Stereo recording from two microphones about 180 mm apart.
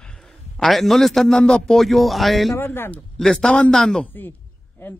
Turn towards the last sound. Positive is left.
turn(degrees=10)  # may be behind; listen again after turning